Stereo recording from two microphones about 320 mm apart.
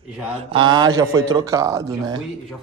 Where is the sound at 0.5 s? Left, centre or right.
Centre.